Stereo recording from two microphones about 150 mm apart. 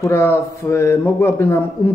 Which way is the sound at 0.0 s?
15° left (ahead or behind).